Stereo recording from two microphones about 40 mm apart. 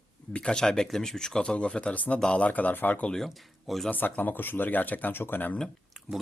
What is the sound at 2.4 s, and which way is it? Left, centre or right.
Speech, left.